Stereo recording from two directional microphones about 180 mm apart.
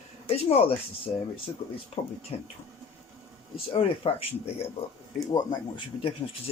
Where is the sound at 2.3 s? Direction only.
35° left (ahead or behind).